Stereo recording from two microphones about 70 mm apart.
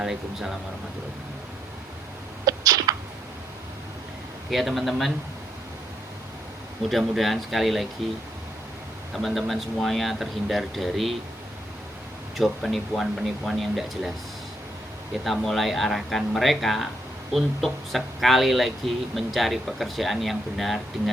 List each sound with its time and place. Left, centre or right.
0.0 s speech: centre
2.5 s a sound: right
4.5 s speech: centre
6.9 s speech: centre
9.1 s speech: centre
12.4 s speech: centre
15.2 s speech: centre